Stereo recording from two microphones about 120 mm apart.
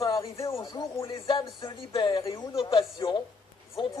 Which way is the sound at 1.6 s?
45° left (ahead or behind).